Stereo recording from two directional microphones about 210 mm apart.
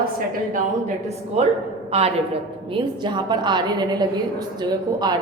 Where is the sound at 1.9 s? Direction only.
30° right (ahead or behind).